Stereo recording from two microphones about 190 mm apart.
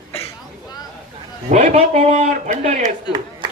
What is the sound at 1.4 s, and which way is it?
A man's voice, 40° right (ahead or behind).